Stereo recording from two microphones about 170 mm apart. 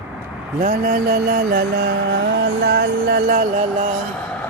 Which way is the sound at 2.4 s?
90° right.